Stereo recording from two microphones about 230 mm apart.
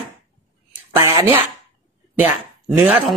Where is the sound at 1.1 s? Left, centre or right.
Centre.